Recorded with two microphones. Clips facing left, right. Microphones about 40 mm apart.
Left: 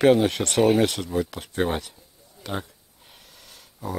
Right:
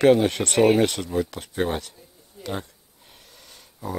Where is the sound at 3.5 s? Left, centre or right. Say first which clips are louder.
Even; centre.